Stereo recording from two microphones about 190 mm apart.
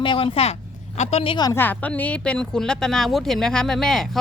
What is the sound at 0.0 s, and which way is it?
Speech, 25° left (ahead or behind).